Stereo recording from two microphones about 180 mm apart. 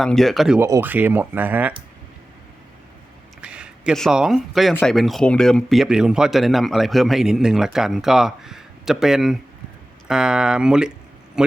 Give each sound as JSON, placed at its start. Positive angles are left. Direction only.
{"t": 0.0, "sound": "speech", "side_deg": 0}
{"t": 3.4, "sound": "speech", "side_deg": -5}
{"t": 4.7, "sound": "a man's voice", "side_deg": 10}